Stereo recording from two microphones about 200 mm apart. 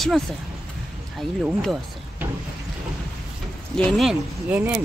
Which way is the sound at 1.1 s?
Centre (ahead or behind).